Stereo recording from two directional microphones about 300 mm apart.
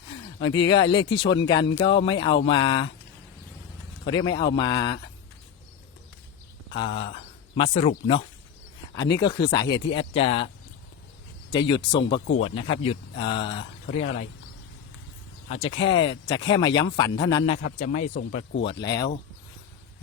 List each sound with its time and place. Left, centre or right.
0.1 s speech: centre
4.0 s speech: centre
6.7 s speech: centre
11.5 s speech: centre
15.4 s speech: left
18.6 s speech: centre